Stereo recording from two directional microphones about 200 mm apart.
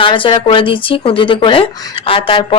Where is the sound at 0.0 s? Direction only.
25° left (ahead or behind).